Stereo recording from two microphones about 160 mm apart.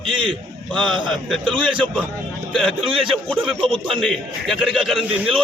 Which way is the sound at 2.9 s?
35° right (ahead or behind).